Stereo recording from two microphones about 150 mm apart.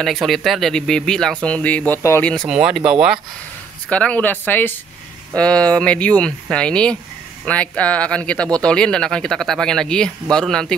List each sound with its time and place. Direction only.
0.0 s speech: centre (ahead or behind)
2.3 s speech: centre (ahead or behind)
3.9 s speech: 10° left (ahead or behind)